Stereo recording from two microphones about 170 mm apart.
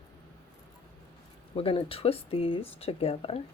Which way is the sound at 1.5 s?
30° left (ahead or behind).